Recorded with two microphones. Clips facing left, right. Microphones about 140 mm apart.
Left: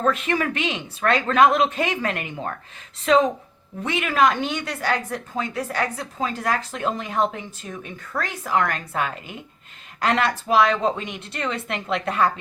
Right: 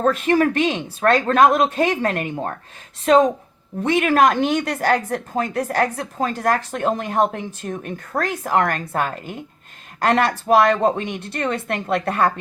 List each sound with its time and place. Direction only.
0.0 s a woman's voice: 45° right (ahead or behind)